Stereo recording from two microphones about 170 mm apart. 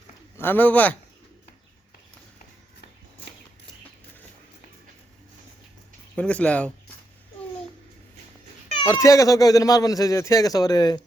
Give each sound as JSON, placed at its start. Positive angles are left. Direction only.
{"t": 0.3, "sound": "speech", "side_deg": 10}
{"t": 6.1, "sound": "speech", "side_deg": 5}
{"t": 8.9, "sound": "speech", "side_deg": 20}